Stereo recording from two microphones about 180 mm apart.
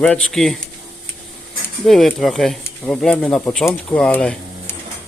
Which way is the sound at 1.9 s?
Centre (ahead or behind).